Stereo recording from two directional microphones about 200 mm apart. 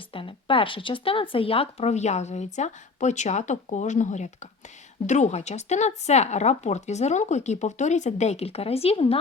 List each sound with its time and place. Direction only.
0.1 s speech: 25° left (ahead or behind)